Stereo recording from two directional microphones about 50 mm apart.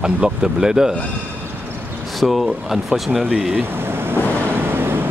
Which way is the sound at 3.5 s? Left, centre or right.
Right.